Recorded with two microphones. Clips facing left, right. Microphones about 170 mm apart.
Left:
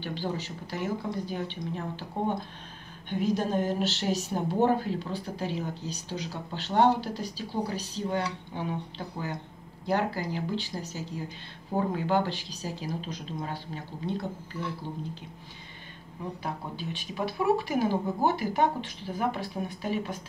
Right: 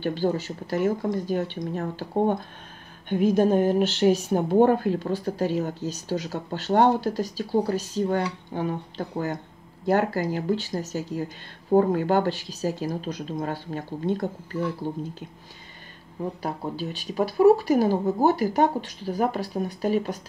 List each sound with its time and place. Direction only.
0.0 s a woman's voice: 45° right (ahead or behind)
16.4 s speech: 40° right (ahead or behind)